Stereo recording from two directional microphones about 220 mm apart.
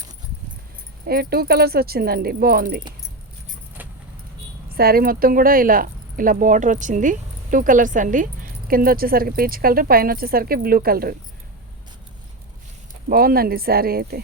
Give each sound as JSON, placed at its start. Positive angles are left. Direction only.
{"t": 1.0, "sound": "speech", "side_deg": -45}
{"t": 3.8, "sound": "keys jangling", "side_deg": -10}
{"t": 4.7, "sound": "speech", "side_deg": -45}
{"t": 13.1, "sound": "speech", "side_deg": -40}